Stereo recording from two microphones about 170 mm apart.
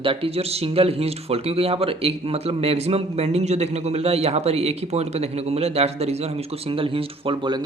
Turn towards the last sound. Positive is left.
turn(degrees=-30)  # may be behind; listen again after turning